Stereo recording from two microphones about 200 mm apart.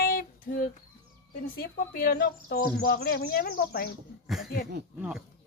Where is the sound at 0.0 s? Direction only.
50° left (ahead or behind).